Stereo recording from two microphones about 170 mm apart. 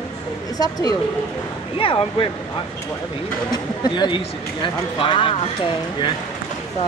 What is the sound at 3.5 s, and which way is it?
Speech, 25° left (ahead or behind).